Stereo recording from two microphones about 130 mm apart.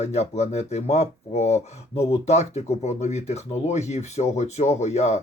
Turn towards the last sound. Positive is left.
turn(degrees=60)  # may be behind; listen again after turning